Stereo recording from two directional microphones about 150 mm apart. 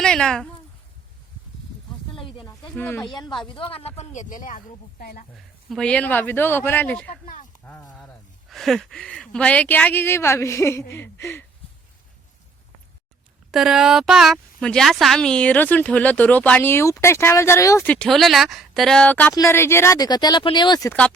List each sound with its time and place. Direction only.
0.0 s speech: 5° left (ahead or behind)
2.1 s snake: 35° left (ahead or behind)
2.7 s speech: 10° left (ahead or behind)
3.0 s speech: 30° left (ahead or behind); by 5.2 s 75° left (ahead or behind)
5.6 s speech: 5° left (ahead or behind)
13.5 s a woman's voice: 5° right (ahead or behind); by 20.9 s 25° left (ahead or behind)